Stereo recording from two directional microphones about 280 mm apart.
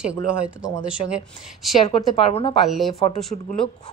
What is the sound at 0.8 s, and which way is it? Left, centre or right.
Speech, centre.